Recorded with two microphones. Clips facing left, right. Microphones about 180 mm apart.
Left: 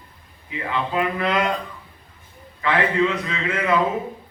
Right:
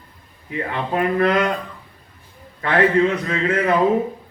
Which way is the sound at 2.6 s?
45° right (ahead or behind).